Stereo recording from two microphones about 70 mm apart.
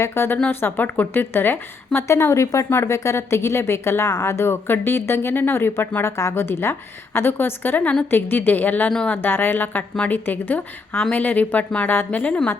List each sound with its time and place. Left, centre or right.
0.0 s a woman's voice: left
2.0 s a woman's voice: left
2.6 s speech: left
6.1 s speech: left
7.8 s a woman's voice: centre
8.1 s a woman's voice: left